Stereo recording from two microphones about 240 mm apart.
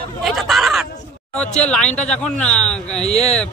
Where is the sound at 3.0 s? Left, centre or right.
Left.